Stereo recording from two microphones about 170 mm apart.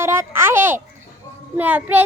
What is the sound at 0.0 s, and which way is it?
A child's voice, 15° right (ahead or behind).